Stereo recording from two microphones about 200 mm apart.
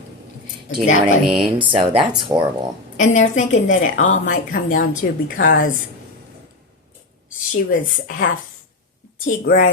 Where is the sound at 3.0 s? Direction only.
40° left (ahead or behind).